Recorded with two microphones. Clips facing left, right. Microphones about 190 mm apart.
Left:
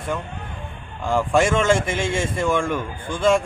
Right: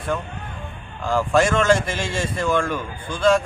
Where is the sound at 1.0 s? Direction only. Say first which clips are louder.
Even; 20° left (ahead or behind).